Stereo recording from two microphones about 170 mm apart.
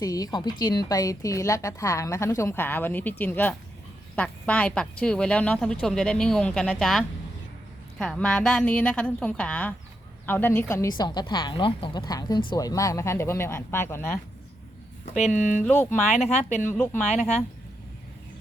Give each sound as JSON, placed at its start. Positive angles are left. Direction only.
{"t": 0.0, "sound": "a woman's voice", "side_deg": 20}
{"t": 15.1, "sound": "speech", "side_deg": 45}
{"t": 15.6, "sound": "a woman's voice", "side_deg": 10}
{"t": 15.9, "sound": "speech", "side_deg": 40}
{"t": 16.6, "sound": "a woman's voice", "side_deg": 10}